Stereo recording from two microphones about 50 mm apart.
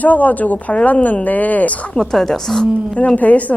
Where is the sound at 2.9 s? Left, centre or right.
Left.